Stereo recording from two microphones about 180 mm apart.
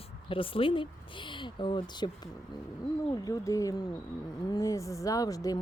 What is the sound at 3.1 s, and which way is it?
Speech, 20° left (ahead or behind).